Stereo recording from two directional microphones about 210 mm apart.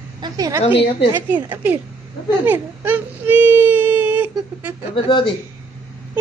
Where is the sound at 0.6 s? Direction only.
25° left (ahead or behind).